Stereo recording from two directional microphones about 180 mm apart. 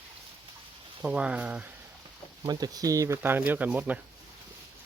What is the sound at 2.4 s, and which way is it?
Speech, 20° right (ahead or behind).